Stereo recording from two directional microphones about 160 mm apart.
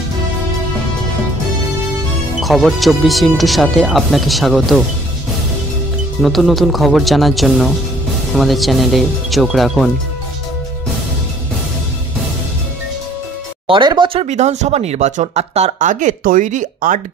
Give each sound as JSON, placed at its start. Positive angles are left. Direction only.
{"t": 2.4, "sound": "speech", "side_deg": 0}
{"t": 6.2, "sound": "speech", "side_deg": 0}
{"t": 13.7, "sound": "speech", "side_deg": -30}